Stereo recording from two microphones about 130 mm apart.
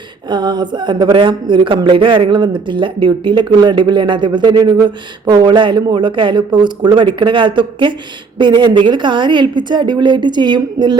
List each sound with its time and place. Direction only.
0.3 s speech: 35° right (ahead or behind)